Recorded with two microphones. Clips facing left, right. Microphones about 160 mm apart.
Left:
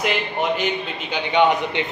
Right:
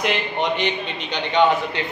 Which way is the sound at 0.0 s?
5° left (ahead or behind).